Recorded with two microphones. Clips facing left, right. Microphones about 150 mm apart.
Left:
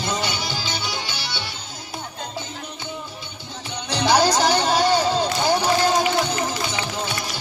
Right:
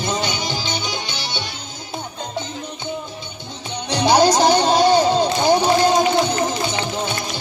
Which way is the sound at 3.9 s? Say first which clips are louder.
Right 4 dB; 15° right (ahead or behind).